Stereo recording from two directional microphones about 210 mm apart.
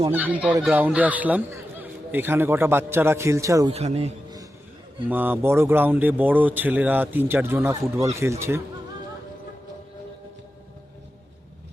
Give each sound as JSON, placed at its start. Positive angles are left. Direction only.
{"t": 0.1, "sound": "speech", "side_deg": -5}
{"t": 3.7, "sound": "a man's voice", "side_deg": -30}
{"t": 5.0, "sound": "speech", "side_deg": -10}